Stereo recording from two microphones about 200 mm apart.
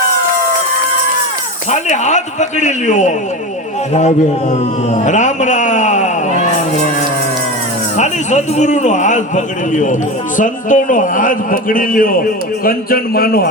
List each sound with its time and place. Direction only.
1.7 s a man's voice: 35° left (ahead or behind)
4.9 s a sound: 40° left (ahead or behind)
7.9 s a man's voice: 35° left (ahead or behind)